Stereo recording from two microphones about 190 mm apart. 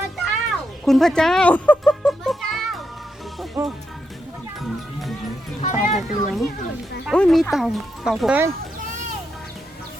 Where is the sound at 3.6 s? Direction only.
10° right (ahead or behind).